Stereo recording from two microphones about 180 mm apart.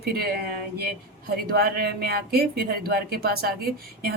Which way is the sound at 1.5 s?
60° right (ahead or behind).